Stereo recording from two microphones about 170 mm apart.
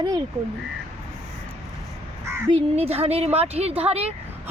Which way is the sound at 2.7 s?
35° right (ahead or behind).